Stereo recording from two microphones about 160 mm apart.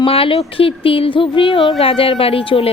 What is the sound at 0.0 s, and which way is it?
A woman's voice, 35° left (ahead or behind).